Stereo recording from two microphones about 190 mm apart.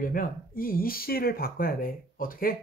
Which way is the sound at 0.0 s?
50° left (ahead or behind).